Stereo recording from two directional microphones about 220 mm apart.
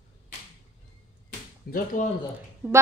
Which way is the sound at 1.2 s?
40° left (ahead or behind).